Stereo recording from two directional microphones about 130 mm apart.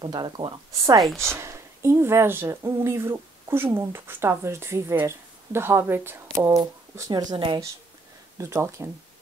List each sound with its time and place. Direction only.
0.0 s speech: 35° right (ahead or behind)
1.0 s speech: 5° left (ahead or behind)
1.3 s speech: 20° right (ahead or behind)
7.3 s speech: 40° right (ahead or behind)
8.4 s speech: 20° right (ahead or behind)